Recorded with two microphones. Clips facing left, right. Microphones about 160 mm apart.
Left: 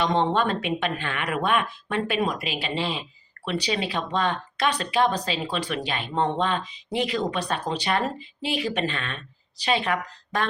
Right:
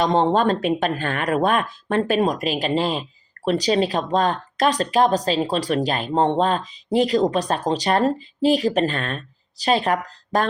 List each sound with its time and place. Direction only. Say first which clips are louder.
0.0 s speech: right 5 dB; 40° right (ahead or behind)